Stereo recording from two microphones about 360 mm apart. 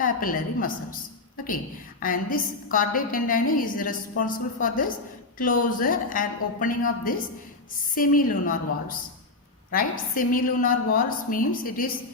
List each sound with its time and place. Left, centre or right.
0.0 s a woman's voice: left
2.0 s a woman's voice: left